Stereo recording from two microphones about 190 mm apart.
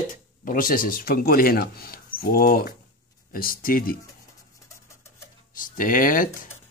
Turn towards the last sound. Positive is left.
turn(degrees=45)  # may be behind; listen again after turning